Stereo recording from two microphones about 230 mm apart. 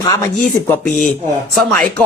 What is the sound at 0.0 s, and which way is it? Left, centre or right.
Speech, centre.